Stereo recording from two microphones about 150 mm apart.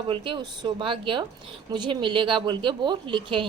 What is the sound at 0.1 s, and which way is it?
A woman's voice, 30° right (ahead or behind).